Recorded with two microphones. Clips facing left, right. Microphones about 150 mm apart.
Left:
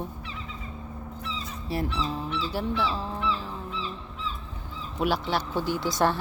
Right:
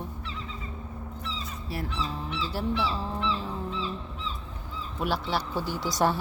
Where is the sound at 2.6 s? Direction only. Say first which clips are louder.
Right 1 dB; 5° right (ahead or behind).